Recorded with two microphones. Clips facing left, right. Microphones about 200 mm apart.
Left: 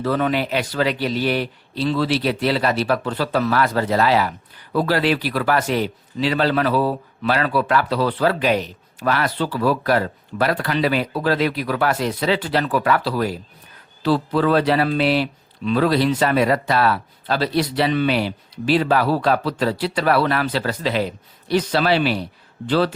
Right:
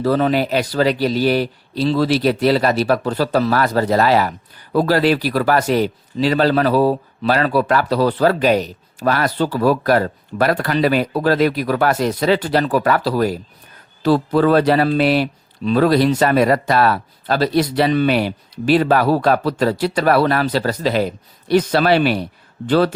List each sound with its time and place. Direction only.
0.0 s a man's voice: 40° right (ahead or behind)